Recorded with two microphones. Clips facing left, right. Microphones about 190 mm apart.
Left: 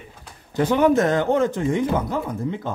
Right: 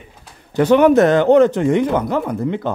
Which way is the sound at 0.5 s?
70° right (ahead or behind).